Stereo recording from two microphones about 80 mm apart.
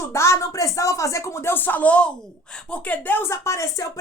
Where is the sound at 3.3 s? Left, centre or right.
Left.